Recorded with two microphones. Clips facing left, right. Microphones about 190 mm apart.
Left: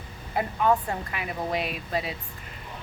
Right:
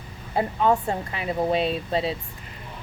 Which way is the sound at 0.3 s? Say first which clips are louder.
Right 2 dB; 25° right (ahead or behind).